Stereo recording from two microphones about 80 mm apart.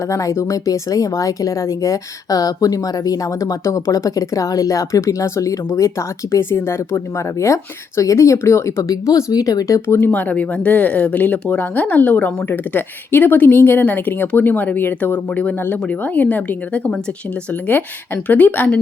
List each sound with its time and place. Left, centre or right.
0.1 s speech: left
9.8 s speech: left